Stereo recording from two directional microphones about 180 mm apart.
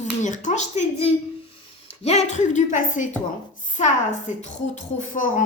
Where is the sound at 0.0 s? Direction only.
40° left (ahead or behind).